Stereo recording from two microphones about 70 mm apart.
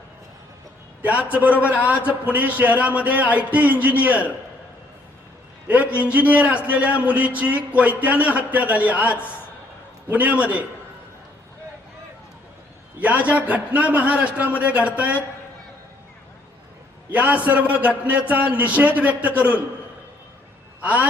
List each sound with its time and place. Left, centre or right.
1.0 s a man's voice: right
5.6 s a man's voice: right
13.0 s a man's voice: centre
17.1 s a man's voice: right
20.8 s a man's voice: right